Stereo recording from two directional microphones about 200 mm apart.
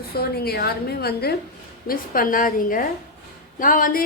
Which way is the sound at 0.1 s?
50° left (ahead or behind).